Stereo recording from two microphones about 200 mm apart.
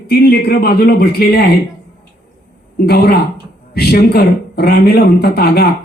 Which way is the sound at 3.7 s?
50° left (ahead or behind).